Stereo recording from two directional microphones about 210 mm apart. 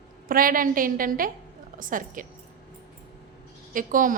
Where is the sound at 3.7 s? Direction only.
40° right (ahead or behind).